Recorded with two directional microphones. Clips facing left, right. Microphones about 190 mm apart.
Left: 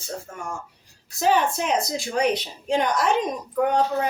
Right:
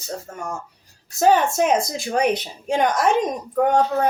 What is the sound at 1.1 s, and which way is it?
Speech, 45° right (ahead or behind).